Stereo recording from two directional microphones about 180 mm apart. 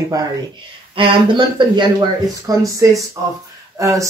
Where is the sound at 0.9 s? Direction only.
30° right (ahead or behind).